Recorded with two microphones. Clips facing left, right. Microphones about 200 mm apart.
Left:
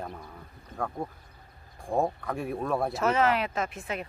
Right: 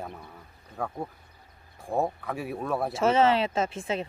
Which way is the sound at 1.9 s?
5° right (ahead or behind).